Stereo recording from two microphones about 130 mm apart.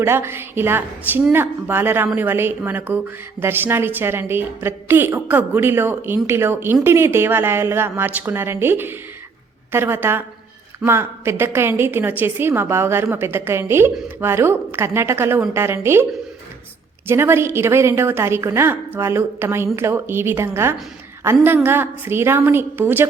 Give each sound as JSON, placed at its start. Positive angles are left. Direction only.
{"t": 0.0, "sound": "a woman's voice", "side_deg": -20}
{"t": 17.1, "sound": "a woman's voice", "side_deg": -20}